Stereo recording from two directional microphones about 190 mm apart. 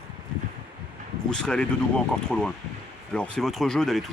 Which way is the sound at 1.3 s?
5° left (ahead or behind).